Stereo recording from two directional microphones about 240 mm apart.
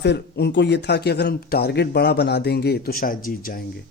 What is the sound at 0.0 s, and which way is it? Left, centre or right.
Speech, left.